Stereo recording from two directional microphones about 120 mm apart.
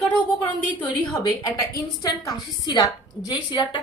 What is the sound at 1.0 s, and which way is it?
A woman's voice, 30° left (ahead or behind).